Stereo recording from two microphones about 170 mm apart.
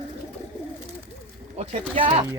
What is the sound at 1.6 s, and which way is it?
Speech, 35° right (ahead or behind).